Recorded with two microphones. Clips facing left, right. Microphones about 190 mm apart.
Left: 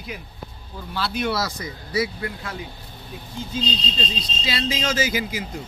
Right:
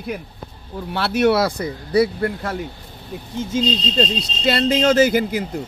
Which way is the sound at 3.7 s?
70° right (ahead or behind).